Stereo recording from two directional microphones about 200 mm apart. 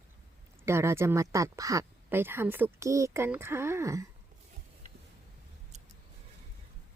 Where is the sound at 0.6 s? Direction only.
15° right (ahead or behind).